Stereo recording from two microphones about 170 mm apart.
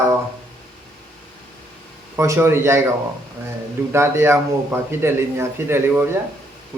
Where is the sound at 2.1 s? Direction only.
15° right (ahead or behind).